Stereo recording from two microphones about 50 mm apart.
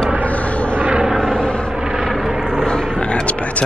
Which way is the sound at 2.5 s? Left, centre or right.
Centre.